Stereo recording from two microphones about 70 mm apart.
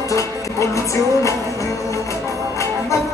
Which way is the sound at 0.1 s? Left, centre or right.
Left.